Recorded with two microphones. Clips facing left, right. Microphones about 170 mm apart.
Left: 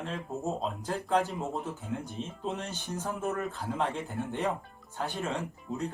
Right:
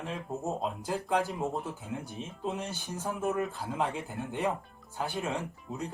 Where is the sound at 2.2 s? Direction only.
10° right (ahead or behind).